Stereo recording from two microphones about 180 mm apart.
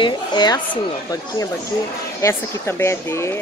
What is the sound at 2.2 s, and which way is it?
Speech, 15° left (ahead or behind).